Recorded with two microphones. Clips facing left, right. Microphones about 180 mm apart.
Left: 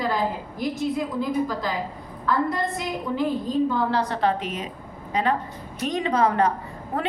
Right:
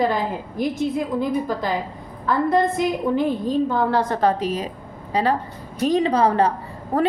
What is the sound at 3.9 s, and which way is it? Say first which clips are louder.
A woman's voice: right 3 dB; 50° right (ahead or behind).